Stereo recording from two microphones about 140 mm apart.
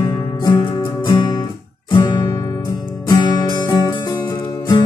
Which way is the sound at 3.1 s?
30° left (ahead or behind).